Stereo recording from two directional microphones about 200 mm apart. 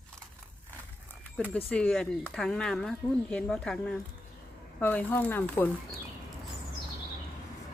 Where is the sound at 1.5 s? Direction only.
5° left (ahead or behind).